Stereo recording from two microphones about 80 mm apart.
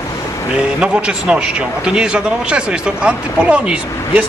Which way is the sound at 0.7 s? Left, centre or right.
Centre.